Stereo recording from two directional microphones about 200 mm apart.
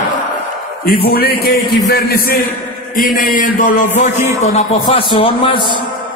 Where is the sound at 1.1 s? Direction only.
50° left (ahead or behind); by 5.6 s 25° left (ahead or behind).